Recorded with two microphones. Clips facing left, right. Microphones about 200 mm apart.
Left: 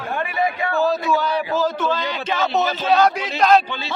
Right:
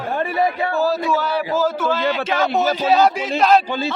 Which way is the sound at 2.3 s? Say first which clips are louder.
Left 1 dB; 10° right (ahead or behind).